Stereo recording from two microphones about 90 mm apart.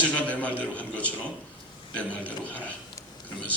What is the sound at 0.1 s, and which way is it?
A man's voice, 15° left (ahead or behind).